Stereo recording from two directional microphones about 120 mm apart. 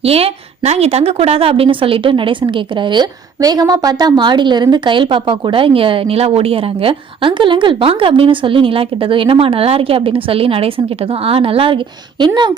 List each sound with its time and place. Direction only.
0.0 s a woman's voice: 55° right (ahead or behind)
2.9 s a woman's voice: 35° right (ahead or behind)